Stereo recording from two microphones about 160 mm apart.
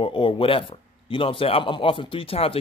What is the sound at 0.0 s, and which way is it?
Speech, 35° left (ahead or behind).